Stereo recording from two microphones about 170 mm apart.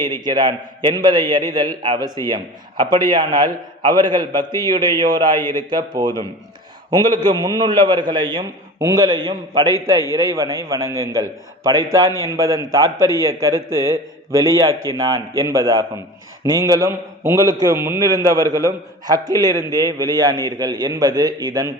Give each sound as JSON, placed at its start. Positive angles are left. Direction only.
{"t": 0.0, "sound": "a man's voice", "side_deg": -25}
{"t": 14.3, "sound": "a man's voice", "side_deg": -20}